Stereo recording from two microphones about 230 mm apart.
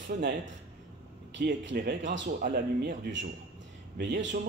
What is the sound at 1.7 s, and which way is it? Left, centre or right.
Speech, right.